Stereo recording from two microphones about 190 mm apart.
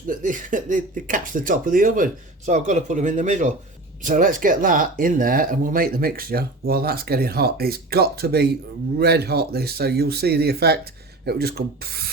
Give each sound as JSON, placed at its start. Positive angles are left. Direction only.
{"t": 0.1, "sound": "speech", "side_deg": -45}